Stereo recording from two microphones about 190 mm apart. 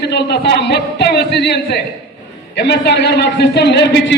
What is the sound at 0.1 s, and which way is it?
A man's voice, 60° left (ahead or behind).